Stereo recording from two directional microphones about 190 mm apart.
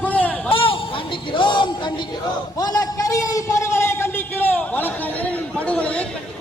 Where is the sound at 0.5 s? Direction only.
25° left (ahead or behind); by 6.1 s 5° left (ahead or behind).